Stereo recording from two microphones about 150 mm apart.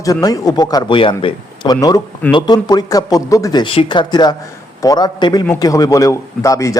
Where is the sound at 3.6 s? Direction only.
35° left (ahead or behind).